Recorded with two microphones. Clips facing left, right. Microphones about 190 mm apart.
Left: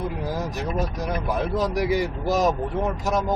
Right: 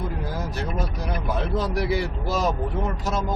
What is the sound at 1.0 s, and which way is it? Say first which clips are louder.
Speech: left 2 dB; 15° left (ahead or behind).